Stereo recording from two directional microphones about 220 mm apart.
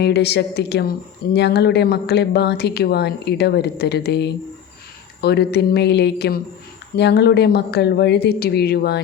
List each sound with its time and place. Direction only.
0.0 s speech: 50° left (ahead or behind)